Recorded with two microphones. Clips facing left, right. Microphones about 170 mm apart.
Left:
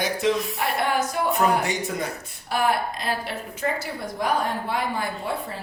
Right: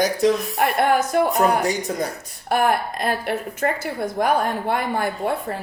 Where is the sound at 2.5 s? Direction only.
55° right (ahead or behind).